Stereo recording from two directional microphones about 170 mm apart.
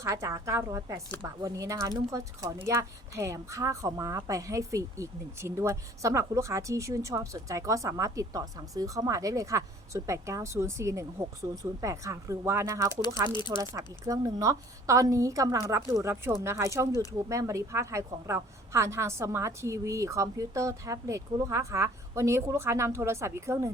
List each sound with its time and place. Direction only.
0.0 s a woman's voice: 20° right (ahead or behind)
13.3 s speech: 25° left (ahead or behind)
13.6 s a woman's voice: 20° right (ahead or behind)